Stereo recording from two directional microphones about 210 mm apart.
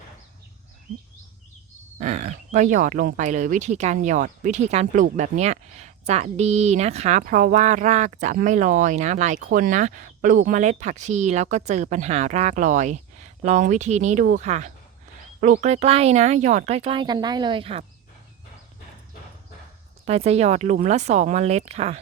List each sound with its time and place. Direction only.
2.0 s speech: 35° right (ahead or behind)
20.1 s speech: 30° right (ahead or behind)